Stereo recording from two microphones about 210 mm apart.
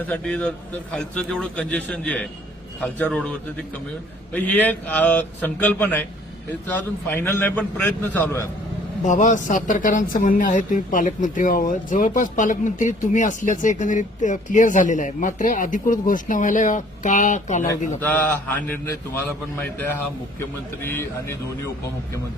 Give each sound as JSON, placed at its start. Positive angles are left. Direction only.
{"t": 0.0, "sound": "a man's voice", "side_deg": 5}
{"t": 9.0, "sound": "speech", "side_deg": 35}
{"t": 18.0, "sound": "a man's voice", "side_deg": 10}
{"t": 20.8, "sound": "a man's voice", "side_deg": 10}